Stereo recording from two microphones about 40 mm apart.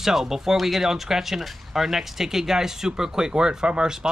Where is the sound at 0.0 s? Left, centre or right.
Centre.